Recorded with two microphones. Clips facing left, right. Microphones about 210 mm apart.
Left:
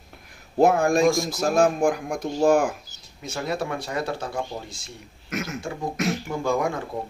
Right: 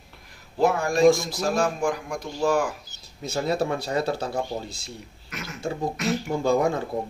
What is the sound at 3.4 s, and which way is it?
Speech, 30° right (ahead or behind).